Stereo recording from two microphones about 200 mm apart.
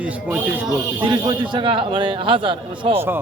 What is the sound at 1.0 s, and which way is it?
A man's voice, 20° right (ahead or behind).